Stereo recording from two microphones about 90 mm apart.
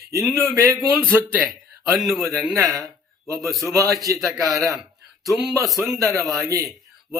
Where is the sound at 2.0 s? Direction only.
Centre (ahead or behind).